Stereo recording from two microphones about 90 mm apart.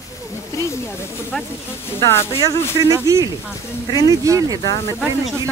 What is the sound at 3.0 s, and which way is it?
Speech, 40° right (ahead or behind).